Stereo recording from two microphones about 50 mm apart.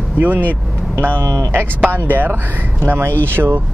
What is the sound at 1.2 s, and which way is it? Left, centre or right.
Speech, right.